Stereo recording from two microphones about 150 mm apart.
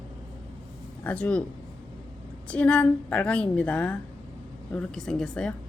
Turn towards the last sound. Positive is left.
turn(degrees=5)  # may be behind; listen again after turning